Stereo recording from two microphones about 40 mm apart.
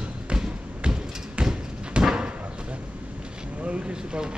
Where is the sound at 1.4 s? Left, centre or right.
Centre.